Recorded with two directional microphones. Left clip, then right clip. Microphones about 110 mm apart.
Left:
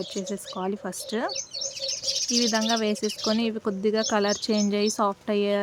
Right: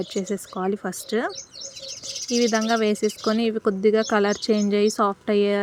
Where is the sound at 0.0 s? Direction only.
25° right (ahead or behind).